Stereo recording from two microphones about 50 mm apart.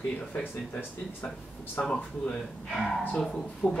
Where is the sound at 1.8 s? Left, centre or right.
Left.